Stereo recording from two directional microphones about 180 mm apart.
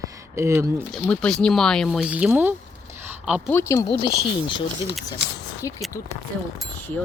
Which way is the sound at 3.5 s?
15° left (ahead or behind).